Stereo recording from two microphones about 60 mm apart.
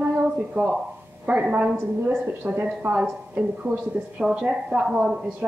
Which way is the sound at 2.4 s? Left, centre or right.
Right.